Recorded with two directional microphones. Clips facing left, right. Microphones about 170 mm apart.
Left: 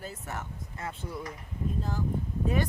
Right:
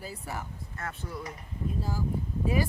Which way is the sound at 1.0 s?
15° left (ahead or behind).